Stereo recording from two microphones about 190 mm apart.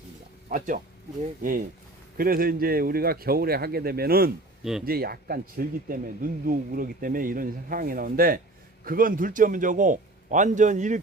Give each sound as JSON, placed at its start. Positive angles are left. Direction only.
{"t": 1.4, "sound": "speech", "side_deg": -50}